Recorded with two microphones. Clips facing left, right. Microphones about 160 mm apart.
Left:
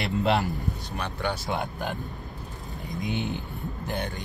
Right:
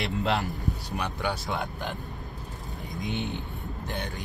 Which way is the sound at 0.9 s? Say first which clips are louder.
Left 1 dB; 15° right (ahead or behind).